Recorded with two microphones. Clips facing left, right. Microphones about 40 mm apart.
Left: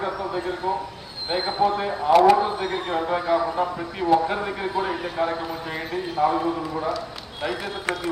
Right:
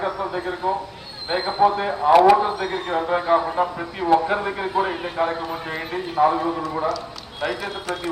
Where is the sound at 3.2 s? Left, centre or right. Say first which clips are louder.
Right 3 dB; right.